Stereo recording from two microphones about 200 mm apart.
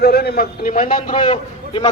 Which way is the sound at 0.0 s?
55° left (ahead or behind).